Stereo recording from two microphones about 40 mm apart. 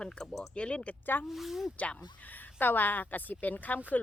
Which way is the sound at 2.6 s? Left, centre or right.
Left.